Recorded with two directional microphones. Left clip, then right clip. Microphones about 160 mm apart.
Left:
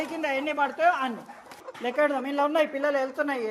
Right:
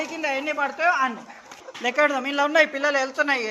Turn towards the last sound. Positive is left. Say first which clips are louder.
# right 5 dB
turn(degrees=20)  # may be behind; listen again after turning